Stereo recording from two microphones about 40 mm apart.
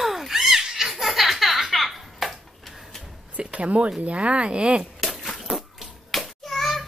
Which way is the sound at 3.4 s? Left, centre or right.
Right.